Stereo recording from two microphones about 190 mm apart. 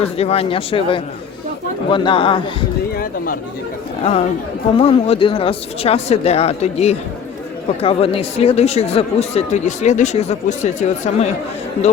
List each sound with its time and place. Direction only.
0.0 s speech: 30° left (ahead or behind)
2.9 s a sound: 50° left (ahead or behind)
4.8 s speech: 30° left (ahead or behind)